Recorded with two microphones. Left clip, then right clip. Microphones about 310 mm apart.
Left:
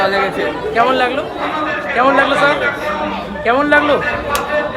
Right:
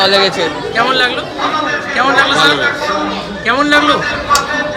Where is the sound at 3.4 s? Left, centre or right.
Centre.